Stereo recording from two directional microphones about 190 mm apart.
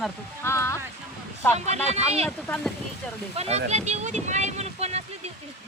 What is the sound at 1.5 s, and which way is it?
Speech, 35° right (ahead or behind).